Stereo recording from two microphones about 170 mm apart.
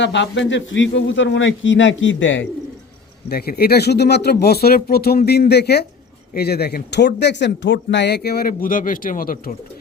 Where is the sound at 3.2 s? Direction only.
65° left (ahead or behind).